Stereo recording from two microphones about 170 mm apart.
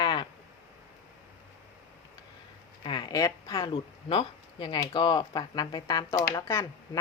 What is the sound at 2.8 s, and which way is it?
Speech, 25° left (ahead or behind).